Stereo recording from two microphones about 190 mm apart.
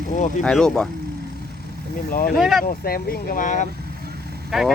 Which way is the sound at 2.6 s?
50° left (ahead or behind).